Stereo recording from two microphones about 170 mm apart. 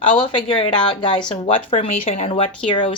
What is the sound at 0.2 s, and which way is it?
A woman's voice, 30° left (ahead or behind).